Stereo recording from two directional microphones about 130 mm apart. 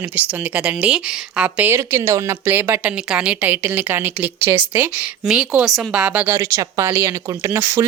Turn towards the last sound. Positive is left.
turn(degrees=-15)  # may be behind; listen again after turning